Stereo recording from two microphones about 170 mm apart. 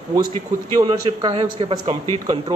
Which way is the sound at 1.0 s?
30° right (ahead or behind).